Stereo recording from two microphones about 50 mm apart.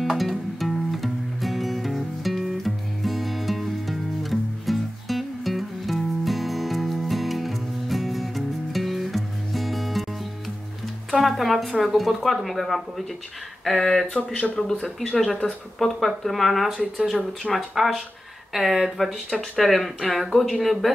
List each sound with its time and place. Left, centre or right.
0.0 s music: centre
11.1 s a woman's voice: centre
14.1 s speech: left
14.6 s a woman's voice: centre